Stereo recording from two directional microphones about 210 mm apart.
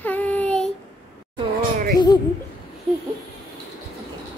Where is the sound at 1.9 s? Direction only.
20° left (ahead or behind).